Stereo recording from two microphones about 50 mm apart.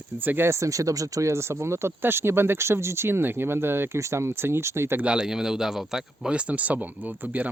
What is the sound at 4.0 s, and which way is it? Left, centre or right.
Speech, right.